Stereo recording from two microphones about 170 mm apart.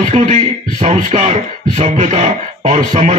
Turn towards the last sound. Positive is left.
turn(degrees=-30)  # may be behind; listen again after turning